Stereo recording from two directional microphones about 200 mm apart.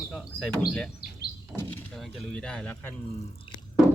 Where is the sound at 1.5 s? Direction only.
5° left (ahead or behind).